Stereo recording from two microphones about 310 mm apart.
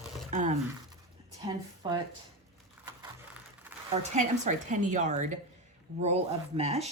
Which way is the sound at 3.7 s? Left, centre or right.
Centre.